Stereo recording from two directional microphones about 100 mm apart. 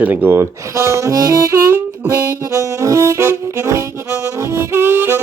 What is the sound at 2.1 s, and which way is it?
Saxophone, 25° right (ahead or behind).